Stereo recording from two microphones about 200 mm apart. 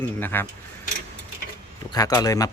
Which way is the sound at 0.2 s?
10° left (ahead or behind).